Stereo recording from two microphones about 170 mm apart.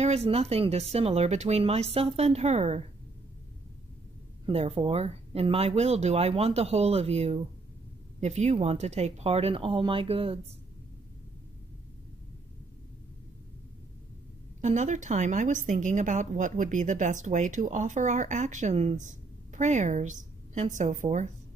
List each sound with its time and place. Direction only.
0.0 s speech: 40° right (ahead or behind)
4.5 s speech: 35° right (ahead or behind)
14.6 s speech: 45° right (ahead or behind)